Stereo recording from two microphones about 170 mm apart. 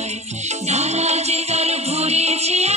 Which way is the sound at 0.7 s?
40° right (ahead or behind).